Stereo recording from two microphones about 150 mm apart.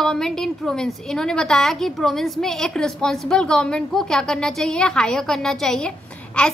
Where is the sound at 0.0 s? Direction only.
5° left (ahead or behind).